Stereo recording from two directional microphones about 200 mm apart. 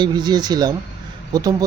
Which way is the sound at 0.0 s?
20° right (ahead or behind).